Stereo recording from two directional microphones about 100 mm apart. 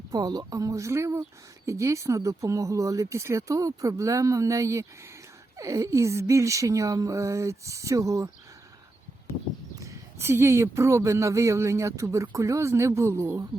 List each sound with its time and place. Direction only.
0.1 s speech: 40° right (ahead or behind)
9.8 s speech: 30° right (ahead or behind)